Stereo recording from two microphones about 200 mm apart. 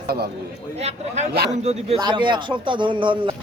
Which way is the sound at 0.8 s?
30° right (ahead or behind).